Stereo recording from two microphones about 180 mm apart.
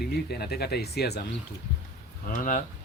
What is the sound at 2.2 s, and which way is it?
Speech, 50° left (ahead or behind).